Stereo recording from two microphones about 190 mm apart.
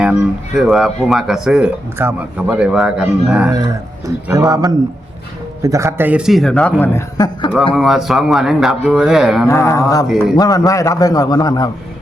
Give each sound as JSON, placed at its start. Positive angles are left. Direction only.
{"t": 0.0, "sound": "speech", "side_deg": -5}
{"t": 4.0, "sound": "speech", "side_deg": -15}
{"t": 7.7, "sound": "speech", "side_deg": 0}
{"t": 9.5, "sound": "a sound", "side_deg": 15}
{"t": 10.1, "sound": "speech", "side_deg": 0}
{"t": 10.3, "sound": "a man's voice", "side_deg": 20}